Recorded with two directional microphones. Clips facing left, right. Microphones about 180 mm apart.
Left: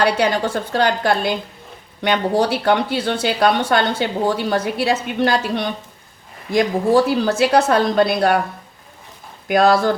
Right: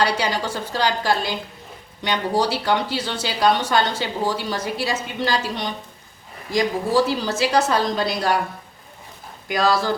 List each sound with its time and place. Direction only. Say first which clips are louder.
0.0 s a woman's voice: left 4 dB; 55° left (ahead or behind)
9.5 s a woman's voice: left 6 dB; 55° left (ahead or behind)